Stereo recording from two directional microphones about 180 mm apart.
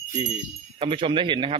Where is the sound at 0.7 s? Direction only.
30° right (ahead or behind).